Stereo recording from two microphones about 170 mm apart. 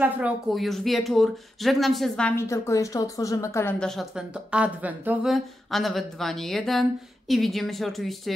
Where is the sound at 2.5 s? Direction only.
20° left (ahead or behind).